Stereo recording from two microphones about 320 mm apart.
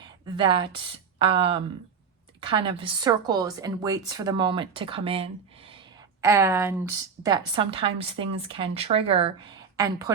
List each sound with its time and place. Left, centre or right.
0.0 s a woman's voice: centre